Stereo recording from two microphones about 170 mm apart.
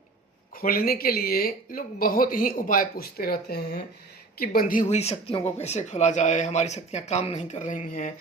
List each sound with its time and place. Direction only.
0.5 s speech: 60° left (ahead or behind)
4.4 s speech: 55° left (ahead or behind)